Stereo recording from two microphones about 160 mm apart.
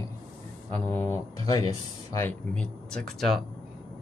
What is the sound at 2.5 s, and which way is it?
Speech, 5° left (ahead or behind).